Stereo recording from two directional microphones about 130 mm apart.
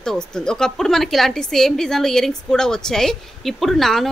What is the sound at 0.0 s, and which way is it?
A woman's voice, 5° left (ahead or behind).